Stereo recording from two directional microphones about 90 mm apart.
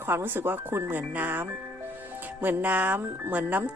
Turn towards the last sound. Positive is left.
turn(degrees=-20)  # may be behind; listen again after turning